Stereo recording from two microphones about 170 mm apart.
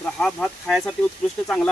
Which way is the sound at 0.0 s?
5° left (ahead or behind).